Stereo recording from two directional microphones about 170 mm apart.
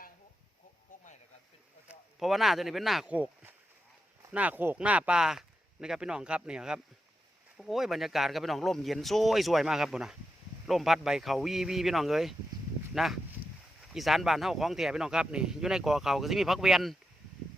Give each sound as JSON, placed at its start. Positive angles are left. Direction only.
{"t": 1.9, "sound": "speech", "side_deg": 0}